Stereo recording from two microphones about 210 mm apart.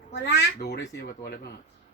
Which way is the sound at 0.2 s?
50° left (ahead or behind).